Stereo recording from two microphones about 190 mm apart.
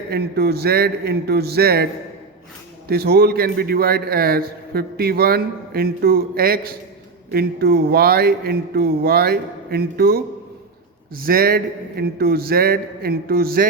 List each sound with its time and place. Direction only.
0.1 s a man's voice: 55° right (ahead or behind)
11.3 s a man's voice: 50° right (ahead or behind)